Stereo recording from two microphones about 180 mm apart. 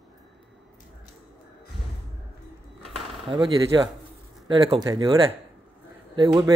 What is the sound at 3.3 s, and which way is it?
Speech, 25° right (ahead or behind).